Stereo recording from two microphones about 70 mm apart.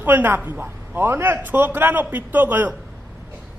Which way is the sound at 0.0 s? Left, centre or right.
Right.